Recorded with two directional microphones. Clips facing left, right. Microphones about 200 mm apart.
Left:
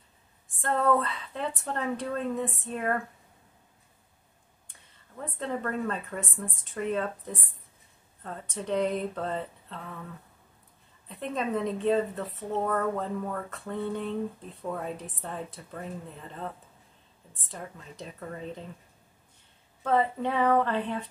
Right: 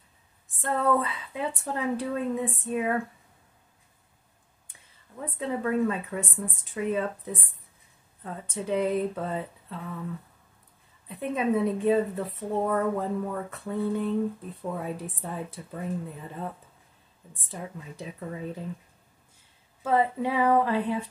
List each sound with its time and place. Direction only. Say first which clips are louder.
0.6 s a woman's voice: even; 10° right (ahead or behind)
4.6 s a woman's voice: right 2 dB; 10° right (ahead or behind)
11.1 s a woman's voice: right 4 dB; 10° right (ahead or behind)
19.8 s a woman's voice: right 1 dB; 5° right (ahead or behind)